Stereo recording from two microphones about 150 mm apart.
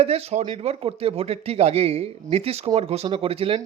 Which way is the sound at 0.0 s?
45° right (ahead or behind).